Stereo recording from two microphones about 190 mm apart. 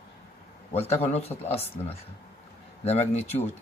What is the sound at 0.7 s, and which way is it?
Speech, 35° left (ahead or behind).